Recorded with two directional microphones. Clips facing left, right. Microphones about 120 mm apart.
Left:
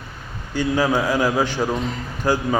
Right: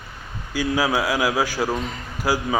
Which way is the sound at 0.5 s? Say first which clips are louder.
Left 2 dB; 5° right (ahead or behind).